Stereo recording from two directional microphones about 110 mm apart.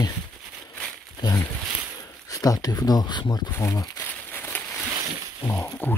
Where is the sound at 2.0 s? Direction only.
35° left (ahead or behind).